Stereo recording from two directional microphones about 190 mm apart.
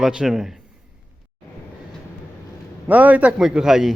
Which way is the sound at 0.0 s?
5° right (ahead or behind).